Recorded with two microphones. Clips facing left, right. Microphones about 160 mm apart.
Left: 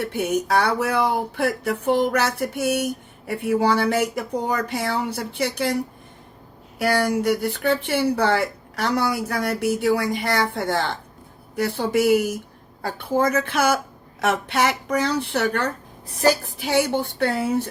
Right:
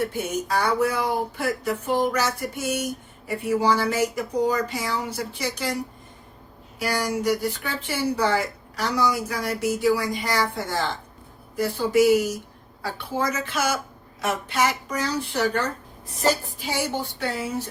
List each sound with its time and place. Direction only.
0.0 s speech: 60° left (ahead or behind)
6.7 s speech: 60° left (ahead or behind)